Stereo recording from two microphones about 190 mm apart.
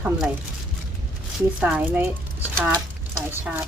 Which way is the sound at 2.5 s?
15° right (ahead or behind).